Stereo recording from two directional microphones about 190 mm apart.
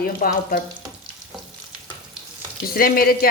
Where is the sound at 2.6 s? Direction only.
50° left (ahead or behind).